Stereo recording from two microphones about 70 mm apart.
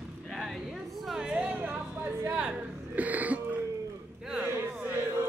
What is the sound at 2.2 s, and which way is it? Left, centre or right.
A woman's voice, centre.